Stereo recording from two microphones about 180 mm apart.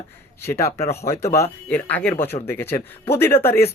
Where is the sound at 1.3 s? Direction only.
10° left (ahead or behind).